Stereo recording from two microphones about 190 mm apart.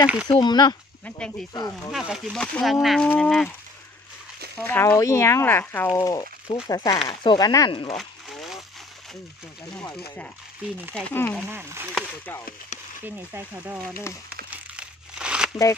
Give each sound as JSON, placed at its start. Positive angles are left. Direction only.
{"t": 0.0, "sound": "speech", "side_deg": -5}
{"t": 0.3, "sound": "speech", "side_deg": 25}
{"t": 1.0, "sound": "speech", "side_deg": 5}
{"t": 4.6, "sound": "speech", "side_deg": 10}
{"t": 7.9, "sound": "a sound", "side_deg": 0}
{"t": 11.0, "sound": "speech", "side_deg": 5}
{"t": 11.4, "sound": "speech", "side_deg": -10}
{"t": 13.0, "sound": "speech", "side_deg": -10}
{"t": 14.5, "sound": "crumpling", "side_deg": -5}